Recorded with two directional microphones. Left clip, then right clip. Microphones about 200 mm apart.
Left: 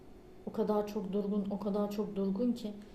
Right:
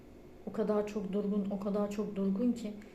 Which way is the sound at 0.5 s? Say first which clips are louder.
Even; 15° left (ahead or behind).